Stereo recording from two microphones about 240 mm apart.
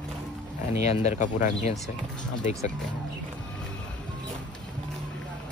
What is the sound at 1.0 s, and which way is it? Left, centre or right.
Speech, left.